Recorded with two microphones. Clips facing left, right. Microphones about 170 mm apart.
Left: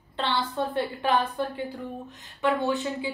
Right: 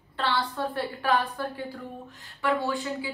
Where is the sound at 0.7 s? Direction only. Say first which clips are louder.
Left 1 dB; 20° left (ahead or behind).